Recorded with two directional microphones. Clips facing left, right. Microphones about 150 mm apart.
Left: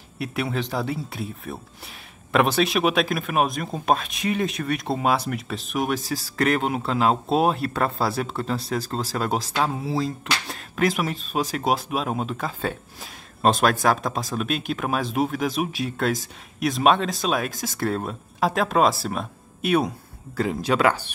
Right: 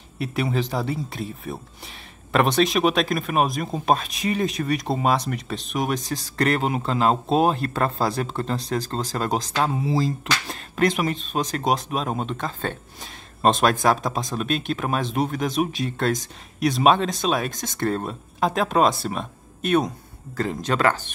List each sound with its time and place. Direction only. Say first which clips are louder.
0.2 s speech: right 2 dB; centre (ahead or behind)